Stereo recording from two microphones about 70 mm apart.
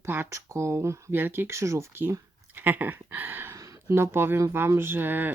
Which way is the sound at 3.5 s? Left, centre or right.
Right.